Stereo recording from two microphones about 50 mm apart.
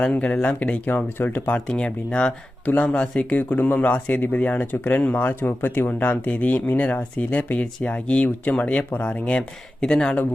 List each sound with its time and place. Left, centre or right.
0.0 s speech: left
1.5 s speech: left
3.5 s speech: left
4.6 s speech: left
5.3 s speech: left; by 10.2 s centre